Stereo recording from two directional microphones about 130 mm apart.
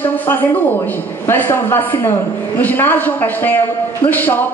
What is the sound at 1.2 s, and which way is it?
A woman's voice, 15° left (ahead or behind).